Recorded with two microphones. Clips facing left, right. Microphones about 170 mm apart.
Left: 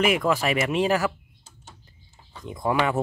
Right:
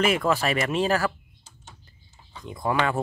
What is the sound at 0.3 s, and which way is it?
Speech, 10° left (ahead or behind).